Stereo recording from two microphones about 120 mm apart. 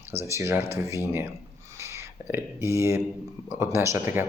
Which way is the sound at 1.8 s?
20° right (ahead or behind).